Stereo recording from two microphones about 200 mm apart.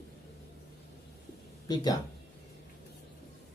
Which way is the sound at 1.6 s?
20° left (ahead or behind).